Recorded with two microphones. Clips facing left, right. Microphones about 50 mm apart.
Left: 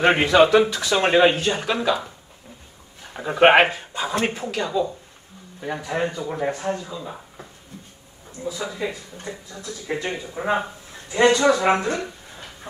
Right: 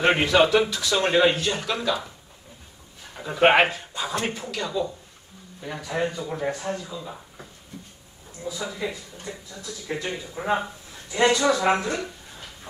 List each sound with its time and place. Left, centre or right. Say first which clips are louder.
0.0 s a man's voice: left 3 dB; left
3.1 s a sound: left 5 dB; left
3.3 s a man's voice: left 3 dB; left
6.5 s speech: left 3 dB; left
8.4 s speech: left 3 dB; left